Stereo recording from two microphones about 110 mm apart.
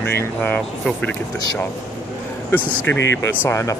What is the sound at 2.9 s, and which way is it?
Speech, 20° left (ahead or behind).